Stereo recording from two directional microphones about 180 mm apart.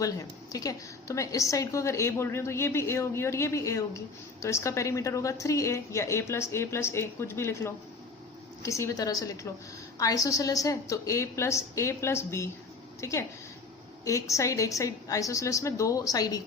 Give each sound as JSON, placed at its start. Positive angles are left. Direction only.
{"t": 0.0, "sound": "a woman's voice", "side_deg": 20}